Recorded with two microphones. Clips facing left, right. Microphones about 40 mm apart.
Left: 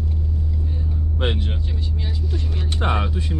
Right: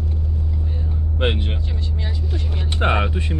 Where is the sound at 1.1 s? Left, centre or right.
Right.